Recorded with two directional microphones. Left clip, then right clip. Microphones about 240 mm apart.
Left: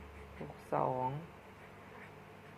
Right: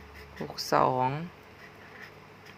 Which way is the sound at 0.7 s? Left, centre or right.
Right.